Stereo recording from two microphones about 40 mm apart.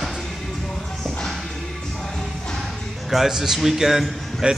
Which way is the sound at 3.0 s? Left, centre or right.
Centre.